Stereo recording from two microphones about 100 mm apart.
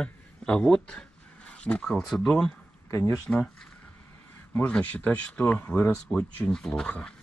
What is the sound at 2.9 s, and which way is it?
Speech, 35° left (ahead or behind).